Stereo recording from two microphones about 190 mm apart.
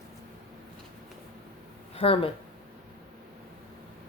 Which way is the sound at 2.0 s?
30° left (ahead or behind).